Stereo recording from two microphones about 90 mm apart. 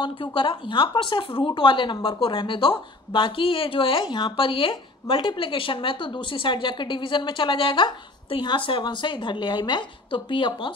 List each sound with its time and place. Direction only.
0.0 s speech: 65° left (ahead or behind)
2.0 s speech: 75° left (ahead or behind)